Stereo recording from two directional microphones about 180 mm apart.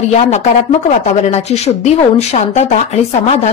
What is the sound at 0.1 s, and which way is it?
A woman's voice, 40° left (ahead or behind).